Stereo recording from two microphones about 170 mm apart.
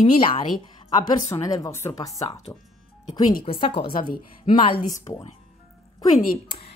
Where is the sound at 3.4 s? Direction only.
35° left (ahead or behind).